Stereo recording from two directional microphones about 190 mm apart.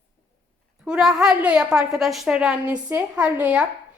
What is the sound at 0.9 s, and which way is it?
A woman's voice, 5° right (ahead or behind).